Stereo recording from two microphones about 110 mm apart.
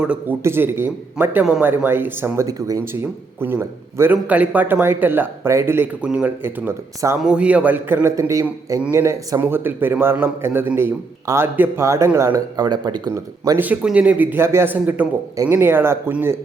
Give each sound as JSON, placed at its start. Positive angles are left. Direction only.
{"t": 0.0, "sound": "a man's voice", "side_deg": -10}
{"t": 2.8, "sound": "speech", "side_deg": -20}
{"t": 7.2, "sound": "a man's voice", "side_deg": -10}
{"t": 11.9, "sound": "speech", "side_deg": -25}
{"t": 12.6, "sound": "speech", "side_deg": -40}
{"t": 13.6, "sound": "a man's voice", "side_deg": -15}